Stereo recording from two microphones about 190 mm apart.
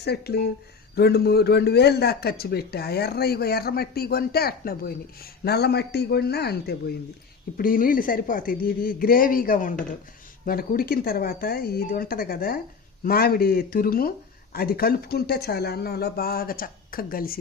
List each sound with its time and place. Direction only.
0.0 s speech: 60° left (ahead or behind)